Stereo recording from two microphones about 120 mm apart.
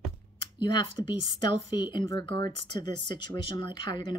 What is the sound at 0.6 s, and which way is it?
Speech, 40° left (ahead or behind).